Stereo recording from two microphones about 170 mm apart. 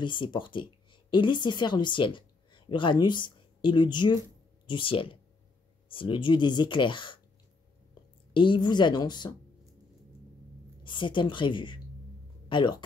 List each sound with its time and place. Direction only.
0.0 s speech: 30° left (ahead or behind)
8.3 s speech: 30° left (ahead or behind)
10.8 s speech: 30° left (ahead or behind)